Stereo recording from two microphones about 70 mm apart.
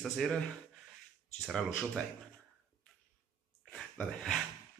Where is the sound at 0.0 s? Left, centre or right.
Centre.